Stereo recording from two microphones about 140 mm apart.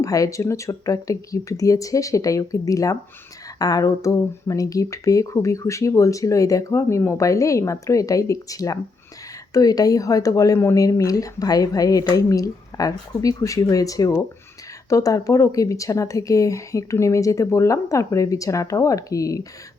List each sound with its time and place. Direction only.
0.0 s speech: 25° left (ahead or behind)